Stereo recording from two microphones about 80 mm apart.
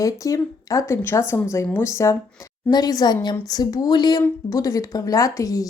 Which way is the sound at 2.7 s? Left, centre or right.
Left.